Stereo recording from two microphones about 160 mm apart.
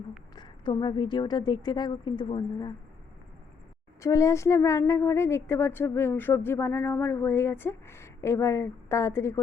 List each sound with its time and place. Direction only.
0.3 s a woman's voice: 30° left (ahead or behind)
4.0 s speech: 20° left (ahead or behind)